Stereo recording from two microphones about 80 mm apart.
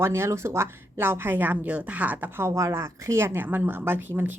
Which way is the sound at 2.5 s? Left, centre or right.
Right.